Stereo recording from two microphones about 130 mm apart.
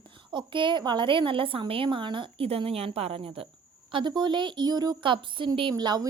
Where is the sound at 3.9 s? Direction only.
40° right (ahead or behind).